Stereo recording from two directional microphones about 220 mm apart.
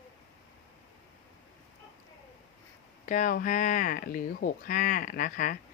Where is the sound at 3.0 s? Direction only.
35° left (ahead or behind).